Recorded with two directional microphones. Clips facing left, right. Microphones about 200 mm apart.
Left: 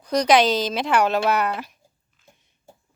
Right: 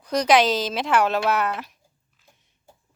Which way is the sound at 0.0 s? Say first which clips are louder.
Left 1 dB; 5° right (ahead or behind).